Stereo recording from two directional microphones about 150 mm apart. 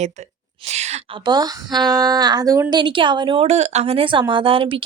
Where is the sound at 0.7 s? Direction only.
50° right (ahead or behind).